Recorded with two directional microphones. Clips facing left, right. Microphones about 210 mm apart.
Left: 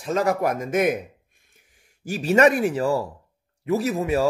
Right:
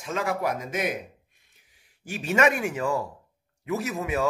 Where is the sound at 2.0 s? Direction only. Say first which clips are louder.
Left 6 dB; 35° left (ahead or behind).